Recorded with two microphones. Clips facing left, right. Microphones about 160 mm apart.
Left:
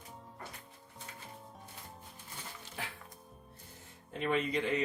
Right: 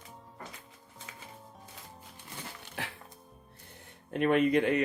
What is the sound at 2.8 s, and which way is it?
Music, 75° right (ahead or behind).